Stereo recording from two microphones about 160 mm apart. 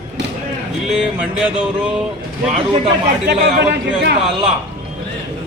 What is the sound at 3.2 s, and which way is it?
Speech, 90° right.